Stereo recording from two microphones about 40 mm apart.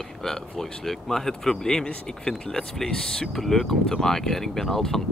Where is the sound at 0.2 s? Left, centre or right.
Centre.